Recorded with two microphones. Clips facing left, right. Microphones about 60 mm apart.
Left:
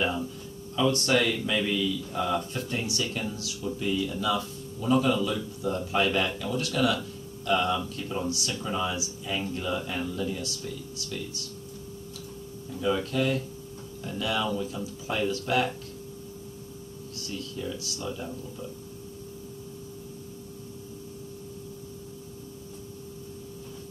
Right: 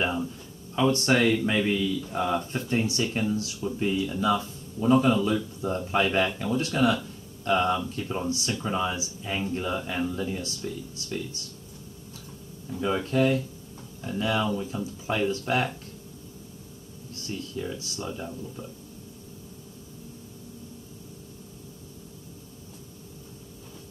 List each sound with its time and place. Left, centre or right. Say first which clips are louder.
0.0 s speech: right 1 dB; right
12.6 s speech: even; right
17.1 s speech: right 3 dB; right